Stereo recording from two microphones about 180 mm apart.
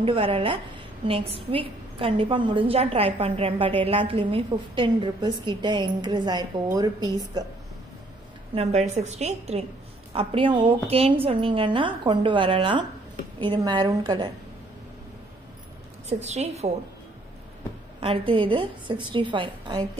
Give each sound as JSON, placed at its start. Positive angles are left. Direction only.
{"t": 0.0, "sound": "a woman's voice", "side_deg": -30}
{"t": 8.5, "sound": "a woman's voice", "side_deg": -35}
{"t": 16.1, "sound": "a woman's voice", "side_deg": -40}
{"t": 18.0, "sound": "a woman's voice", "side_deg": -30}